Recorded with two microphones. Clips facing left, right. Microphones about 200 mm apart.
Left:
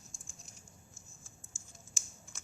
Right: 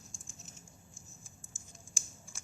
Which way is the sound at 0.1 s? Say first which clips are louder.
Right 2 dB; centre (ahead or behind).